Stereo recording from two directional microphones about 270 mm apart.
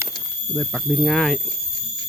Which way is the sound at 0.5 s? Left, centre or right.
Centre.